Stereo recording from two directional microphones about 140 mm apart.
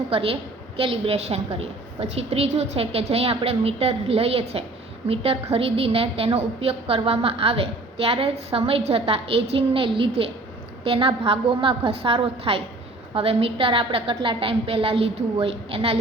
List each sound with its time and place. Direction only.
0.1 s a woman's voice: 45° right (ahead or behind)